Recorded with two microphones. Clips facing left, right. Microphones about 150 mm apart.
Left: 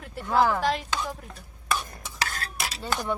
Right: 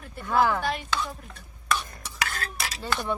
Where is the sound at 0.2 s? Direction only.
10° left (ahead or behind).